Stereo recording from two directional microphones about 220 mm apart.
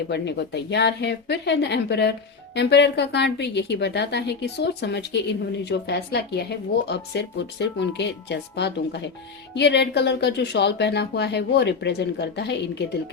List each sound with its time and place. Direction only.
0.1 s a woman's voice: 50° left (ahead or behind)